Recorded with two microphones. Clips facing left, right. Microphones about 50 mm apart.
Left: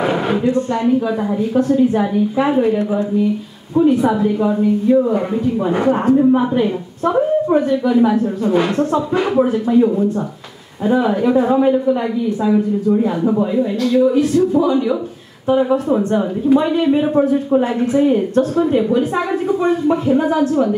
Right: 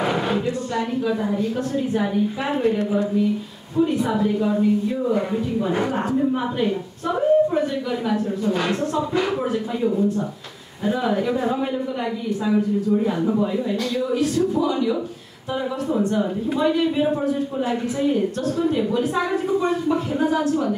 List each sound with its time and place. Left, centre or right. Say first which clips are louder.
2.0 s a man's voice: left 6 dB; centre
3.8 s speech: left 6 dB; centre
6.1 s a man's voice: left 8 dB; centre
13.2 s a man's voice: left 5 dB; left
15.5 s a man's voice: left 9 dB; left